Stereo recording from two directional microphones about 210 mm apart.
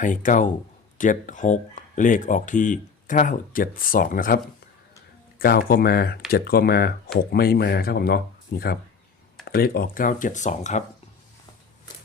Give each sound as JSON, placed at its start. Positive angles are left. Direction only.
{"t": 0.0, "sound": "speech", "side_deg": 35}
{"t": 5.4, "sound": "speech", "side_deg": 45}